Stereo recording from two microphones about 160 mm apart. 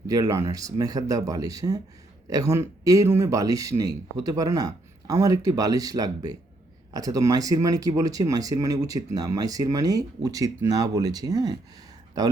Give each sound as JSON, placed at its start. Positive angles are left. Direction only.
{"t": 0.1, "sound": "speech", "side_deg": -20}